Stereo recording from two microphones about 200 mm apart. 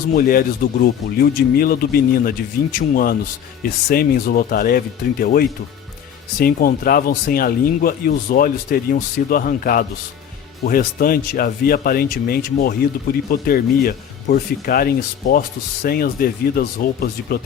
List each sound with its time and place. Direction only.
0.1 s speech: 45° left (ahead or behind)